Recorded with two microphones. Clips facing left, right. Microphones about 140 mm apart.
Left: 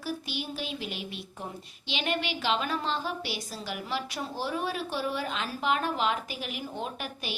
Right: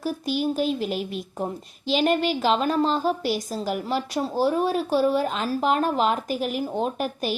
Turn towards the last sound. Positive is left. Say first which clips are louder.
# right 10 dB
turn(degrees=-40)  # may be behind; listen again after turning